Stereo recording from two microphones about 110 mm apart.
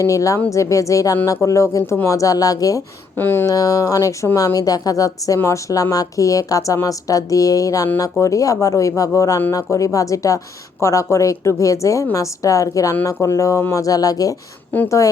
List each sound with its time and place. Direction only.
0.0 s speech: 30° left (ahead or behind)
3.2 s speech: 20° left (ahead or behind)
3.5 s speech: 30° left (ahead or behind)
14.7 s speech: 15° left (ahead or behind)